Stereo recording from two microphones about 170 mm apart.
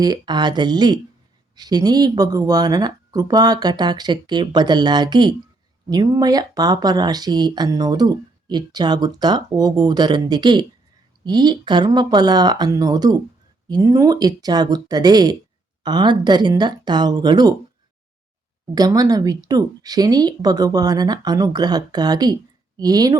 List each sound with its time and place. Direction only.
0.0 s speech: 25° right (ahead or behind)
18.7 s speech: 20° right (ahead or behind)